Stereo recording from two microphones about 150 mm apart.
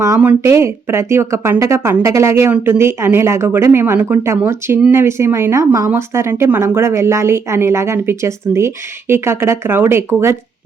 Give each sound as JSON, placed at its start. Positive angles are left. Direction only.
{"t": 0.0, "sound": "speech", "side_deg": -15}